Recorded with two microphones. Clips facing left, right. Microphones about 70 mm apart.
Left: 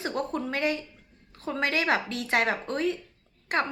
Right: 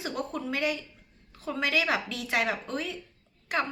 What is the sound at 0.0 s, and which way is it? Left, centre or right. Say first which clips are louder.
A woman's voice: left 3 dB; left.